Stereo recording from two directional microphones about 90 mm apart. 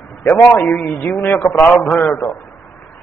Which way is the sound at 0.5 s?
15° left (ahead or behind).